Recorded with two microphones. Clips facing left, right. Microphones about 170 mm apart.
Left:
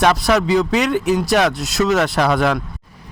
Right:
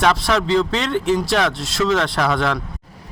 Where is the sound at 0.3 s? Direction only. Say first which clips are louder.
Left 2 dB; 15° left (ahead or behind).